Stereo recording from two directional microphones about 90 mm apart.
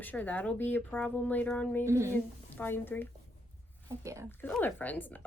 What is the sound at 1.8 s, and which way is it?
Speech, 30° right (ahead or behind).